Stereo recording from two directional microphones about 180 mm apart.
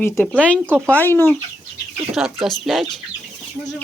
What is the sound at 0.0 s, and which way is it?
Speech, 15° left (ahead or behind).